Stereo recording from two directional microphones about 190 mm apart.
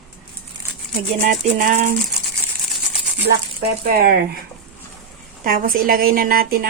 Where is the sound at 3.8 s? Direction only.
55° right (ahead or behind).